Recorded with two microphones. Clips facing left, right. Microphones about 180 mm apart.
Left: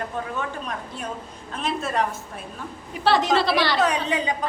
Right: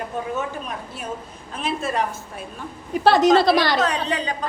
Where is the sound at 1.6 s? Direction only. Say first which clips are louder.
Right 1 dB; centre (ahead or behind).